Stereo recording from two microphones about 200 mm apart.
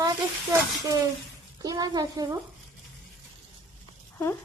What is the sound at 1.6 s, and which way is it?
Speech, 20° right (ahead or behind).